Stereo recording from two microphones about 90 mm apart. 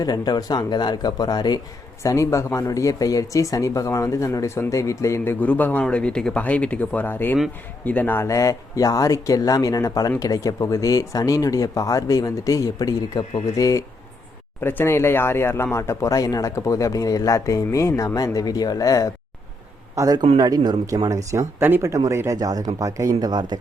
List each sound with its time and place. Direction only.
0.0 s speech: 45° left (ahead or behind)
2.0 s speech: 35° left (ahead or behind)
8.3 s speech: 40° left (ahead or behind)
14.6 s speech: 25° left (ahead or behind); by 19.1 s 40° left (ahead or behind)
20.0 s speech: 40° right (ahead or behind)
21.1 s speech: 35° right (ahead or behind)
23.3 s speech: 55° right (ahead or behind)